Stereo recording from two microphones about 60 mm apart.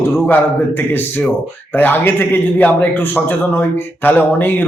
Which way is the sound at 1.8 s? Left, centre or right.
Left.